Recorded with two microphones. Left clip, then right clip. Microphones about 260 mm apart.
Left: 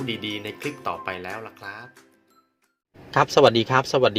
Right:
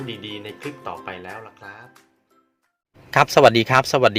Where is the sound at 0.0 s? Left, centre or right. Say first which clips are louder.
Left 3 dB; centre.